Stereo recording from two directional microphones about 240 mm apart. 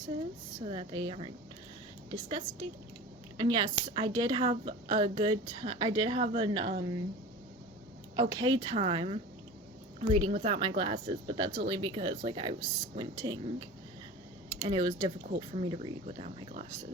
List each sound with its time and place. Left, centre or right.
0.6 s a woman's voice: right
8.1 s a woman's voice: centre